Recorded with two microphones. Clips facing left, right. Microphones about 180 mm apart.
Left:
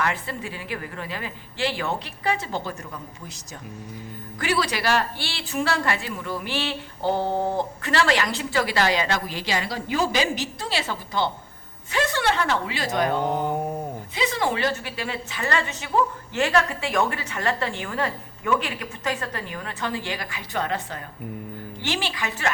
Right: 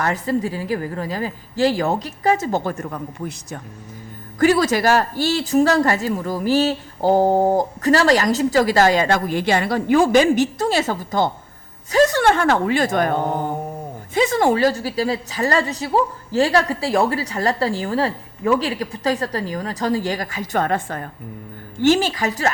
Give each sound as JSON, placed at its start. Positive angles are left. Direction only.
{"t": 0.0, "sound": "a woman's voice", "side_deg": -40}
{"t": 4.4, "sound": "a woman's voice", "side_deg": -45}